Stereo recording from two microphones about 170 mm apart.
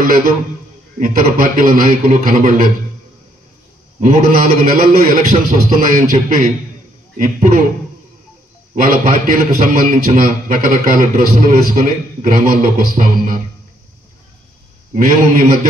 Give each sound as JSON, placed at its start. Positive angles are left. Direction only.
{"t": 0.9, "sound": "a man's voice", "side_deg": -50}
{"t": 4.0, "sound": "a man's voice", "side_deg": -55}
{"t": 7.2, "sound": "a man's voice", "side_deg": -55}
{"t": 8.7, "sound": "a man's voice", "side_deg": -55}
{"t": 15.0, "sound": "a man's voice", "side_deg": -55}